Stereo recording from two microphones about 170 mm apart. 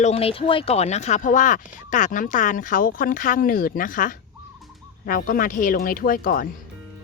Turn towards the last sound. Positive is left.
turn(degrees=55)  # may be behind; listen again after turning